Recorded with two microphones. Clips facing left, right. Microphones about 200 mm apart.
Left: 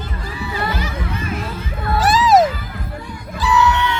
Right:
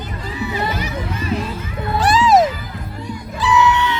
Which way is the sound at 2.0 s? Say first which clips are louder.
Even; centre (ahead or behind).